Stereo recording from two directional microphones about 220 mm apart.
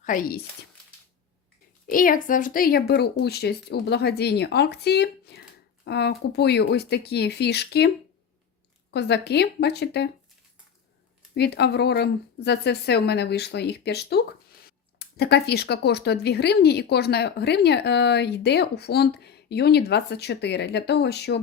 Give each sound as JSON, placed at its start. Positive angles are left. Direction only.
{"t": 0.0, "sound": "speech", "side_deg": 40}
{"t": 1.9, "sound": "speech", "side_deg": 40}
{"t": 8.9, "sound": "speech", "side_deg": 50}
{"t": 11.3, "sound": "speech", "side_deg": 50}